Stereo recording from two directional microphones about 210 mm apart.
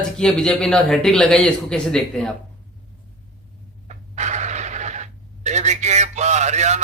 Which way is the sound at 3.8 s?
35° right (ahead or behind).